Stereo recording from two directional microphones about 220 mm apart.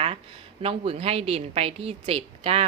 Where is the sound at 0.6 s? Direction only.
25° right (ahead or behind).